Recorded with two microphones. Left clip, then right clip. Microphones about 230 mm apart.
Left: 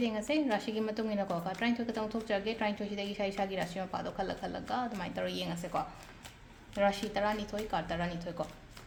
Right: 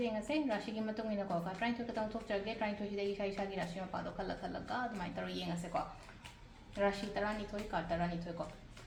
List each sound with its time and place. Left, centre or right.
0.0 s a woman's voice: left
6.7 s a woman's voice: left